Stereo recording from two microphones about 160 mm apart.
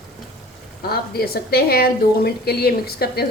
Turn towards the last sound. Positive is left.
turn(degrees=80)